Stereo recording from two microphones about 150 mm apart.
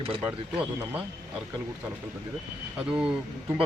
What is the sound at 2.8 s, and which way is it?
Speech, 5° right (ahead or behind).